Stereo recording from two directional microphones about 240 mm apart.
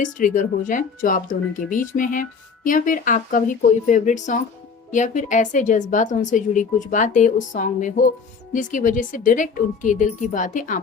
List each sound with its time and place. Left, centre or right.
0.0 s a woman's voice: left